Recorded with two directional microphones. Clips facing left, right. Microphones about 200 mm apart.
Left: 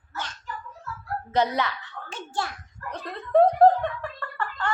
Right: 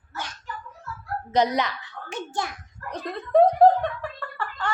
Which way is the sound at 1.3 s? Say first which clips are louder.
Right 2 dB; 15° right (ahead or behind).